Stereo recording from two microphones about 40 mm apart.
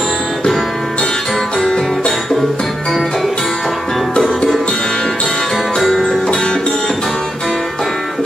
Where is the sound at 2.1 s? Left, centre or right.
Centre.